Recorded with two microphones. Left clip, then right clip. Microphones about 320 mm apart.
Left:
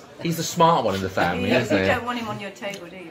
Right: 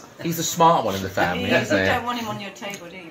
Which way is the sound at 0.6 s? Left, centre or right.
Left.